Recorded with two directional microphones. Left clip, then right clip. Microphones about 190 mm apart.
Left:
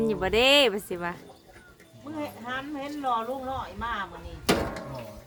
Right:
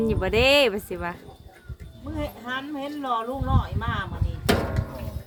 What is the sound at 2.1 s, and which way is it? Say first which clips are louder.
A woman's voice: right 3 dB; 60° right (ahead or behind).